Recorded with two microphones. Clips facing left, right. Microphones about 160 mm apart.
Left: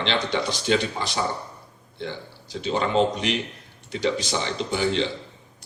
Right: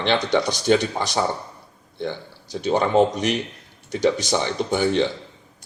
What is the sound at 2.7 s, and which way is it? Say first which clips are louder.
A man's voice: right 4 dB; 50° right (ahead or behind).